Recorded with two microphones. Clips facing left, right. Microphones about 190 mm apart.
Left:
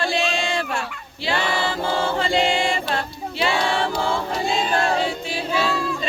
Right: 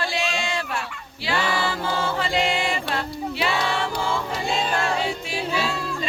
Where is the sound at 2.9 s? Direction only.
30° left (ahead or behind).